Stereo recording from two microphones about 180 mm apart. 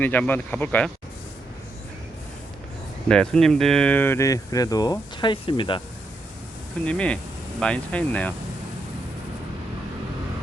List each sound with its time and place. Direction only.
0.0 s speech: 10° left (ahead or behind)
3.1 s speech: 5° left (ahead or behind); by 5.8 s 25° left (ahead or behind)
6.8 s speech: 5° left (ahead or behind)